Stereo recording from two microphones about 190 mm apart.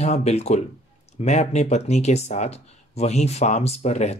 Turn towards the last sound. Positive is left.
turn(degrees=35)  # may be behind; listen again after turning